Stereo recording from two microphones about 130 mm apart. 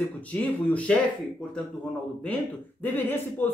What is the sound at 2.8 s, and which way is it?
Speech, 15° left (ahead or behind).